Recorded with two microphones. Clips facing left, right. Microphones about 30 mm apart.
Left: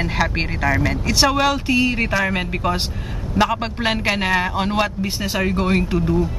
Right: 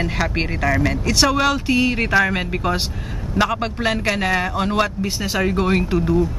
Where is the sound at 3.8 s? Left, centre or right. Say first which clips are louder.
Even; centre.